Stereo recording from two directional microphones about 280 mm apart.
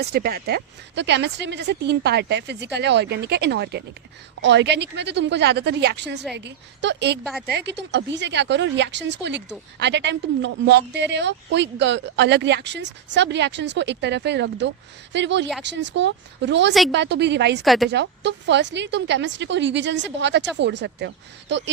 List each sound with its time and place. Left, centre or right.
0.0 s a woman's voice: right
17.6 s a woman's voice: centre
17.8 s a woman's voice: right